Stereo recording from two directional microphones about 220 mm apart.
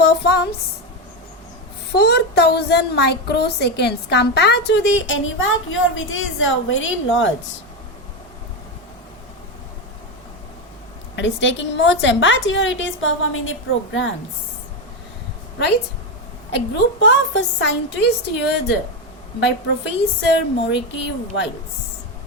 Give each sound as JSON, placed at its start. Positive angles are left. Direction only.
{"t": 0.0, "sound": "a sound", "side_deg": 50}
{"t": 1.9, "sound": "a woman's voice", "side_deg": 45}
{"t": 11.2, "sound": "a woman's voice", "side_deg": 55}
{"t": 16.5, "sound": "a woman's voice", "side_deg": 50}